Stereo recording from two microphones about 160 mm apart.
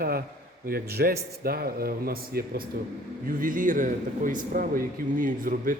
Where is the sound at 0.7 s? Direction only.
70° right (ahead or behind).